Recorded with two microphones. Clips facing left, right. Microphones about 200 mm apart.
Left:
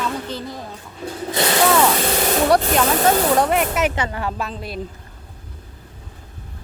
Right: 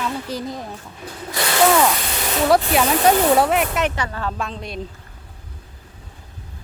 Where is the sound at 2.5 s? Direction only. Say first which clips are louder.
Right 3 dB; 5° right (ahead or behind).